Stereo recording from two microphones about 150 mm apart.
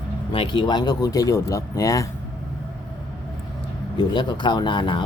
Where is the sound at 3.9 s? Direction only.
30° left (ahead or behind).